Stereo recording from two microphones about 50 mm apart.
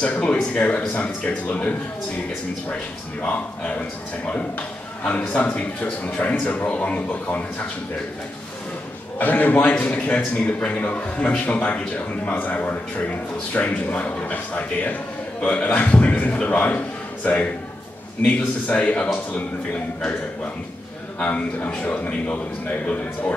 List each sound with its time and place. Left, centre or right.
0.0 s a man's voice: left
3.2 s a man's voice: left
5.1 s a man's voice: left
9.2 s a man's voice: left
21.2 s a man's voice: left